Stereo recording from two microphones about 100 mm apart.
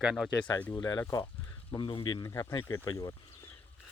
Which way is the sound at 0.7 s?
40° left (ahead or behind).